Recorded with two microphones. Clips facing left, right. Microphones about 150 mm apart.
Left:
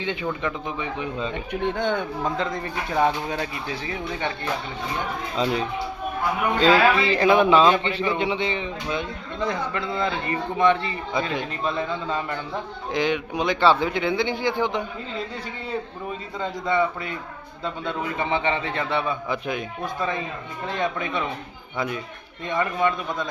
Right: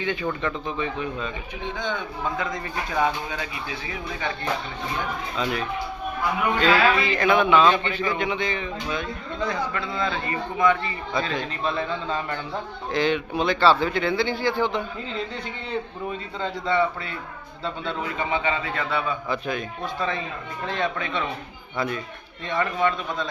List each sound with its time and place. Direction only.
0.0 s a man's voice: 25° left (ahead or behind)
1.6 s speech: 60° left (ahead or behind)
2.2 s speech: 30° left (ahead or behind)
5.4 s a man's voice: 25° left (ahead or behind)
16.4 s a man's voice: 15° left (ahead or behind)